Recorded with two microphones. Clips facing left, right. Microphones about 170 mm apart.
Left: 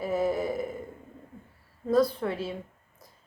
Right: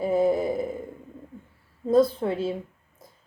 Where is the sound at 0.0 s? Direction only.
25° right (ahead or behind).